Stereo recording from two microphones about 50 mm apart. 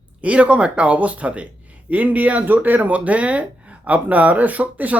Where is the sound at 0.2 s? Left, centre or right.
Right.